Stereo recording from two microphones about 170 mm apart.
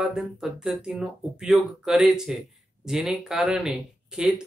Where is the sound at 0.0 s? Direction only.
Centre (ahead or behind).